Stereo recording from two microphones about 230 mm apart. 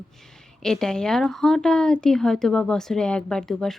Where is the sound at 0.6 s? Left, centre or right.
Centre.